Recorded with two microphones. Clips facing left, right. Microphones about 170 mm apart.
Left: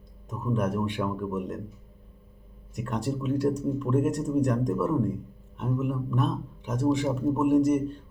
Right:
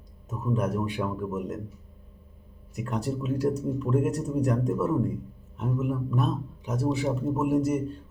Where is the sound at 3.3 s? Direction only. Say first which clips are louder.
Left 1 dB; 35° right (ahead or behind).